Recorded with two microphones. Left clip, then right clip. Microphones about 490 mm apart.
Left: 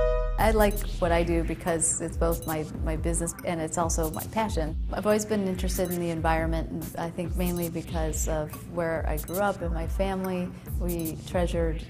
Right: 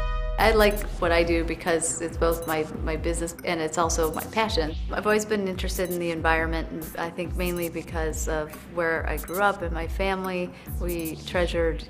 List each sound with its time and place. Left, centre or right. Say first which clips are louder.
0.4 s a woman's voice: right 5 dB; left
10.9 s speech: right 2 dB; centre
11.3 s a woman's voice: right 4 dB; left